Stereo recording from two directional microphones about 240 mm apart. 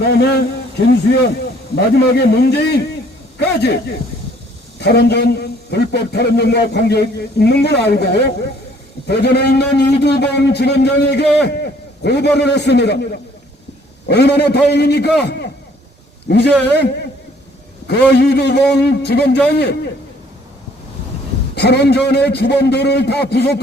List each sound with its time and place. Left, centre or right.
0.1 s a man's voice: left
1.7 s a man's voice: left
4.8 s a man's voice: left
21.5 s a man's voice: left